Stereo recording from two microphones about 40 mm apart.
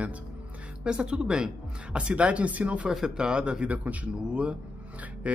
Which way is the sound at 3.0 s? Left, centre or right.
Right.